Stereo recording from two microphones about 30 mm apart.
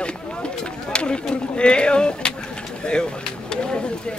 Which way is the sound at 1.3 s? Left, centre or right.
Left.